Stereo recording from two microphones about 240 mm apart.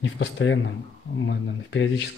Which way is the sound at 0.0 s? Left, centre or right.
Left.